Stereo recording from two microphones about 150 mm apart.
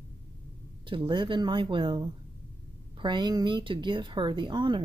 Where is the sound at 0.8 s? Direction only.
35° right (ahead or behind).